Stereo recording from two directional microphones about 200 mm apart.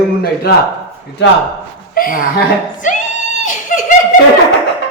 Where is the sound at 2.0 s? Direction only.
45° left (ahead or behind).